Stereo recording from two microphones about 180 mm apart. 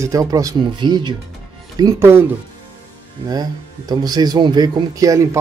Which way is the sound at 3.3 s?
20° right (ahead or behind).